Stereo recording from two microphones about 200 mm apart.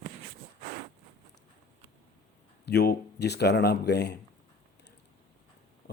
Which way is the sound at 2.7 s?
55° left (ahead or behind).